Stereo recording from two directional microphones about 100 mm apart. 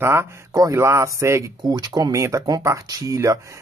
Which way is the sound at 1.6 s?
45° right (ahead or behind).